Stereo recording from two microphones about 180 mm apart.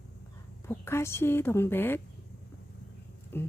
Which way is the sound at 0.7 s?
15° left (ahead or behind).